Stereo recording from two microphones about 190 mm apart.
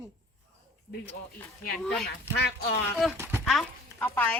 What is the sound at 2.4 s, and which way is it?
Speech, 55° left (ahead or behind).